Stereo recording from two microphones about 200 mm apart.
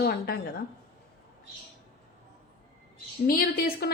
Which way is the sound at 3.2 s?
50° left (ahead or behind).